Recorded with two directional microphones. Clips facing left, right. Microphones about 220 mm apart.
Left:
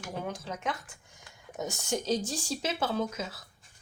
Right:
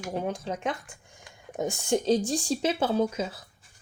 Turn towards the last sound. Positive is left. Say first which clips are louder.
# right 6 dB
turn(degrees=-30)  # may be behind; listen again after turning